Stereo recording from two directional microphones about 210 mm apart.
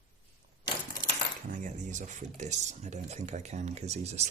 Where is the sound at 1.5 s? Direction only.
35° right (ahead or behind).